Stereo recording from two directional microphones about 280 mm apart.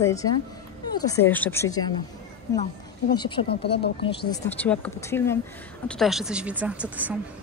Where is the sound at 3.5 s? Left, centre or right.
Left.